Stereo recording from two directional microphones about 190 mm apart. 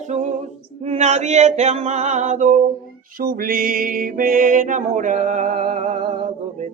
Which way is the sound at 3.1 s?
50° right (ahead or behind).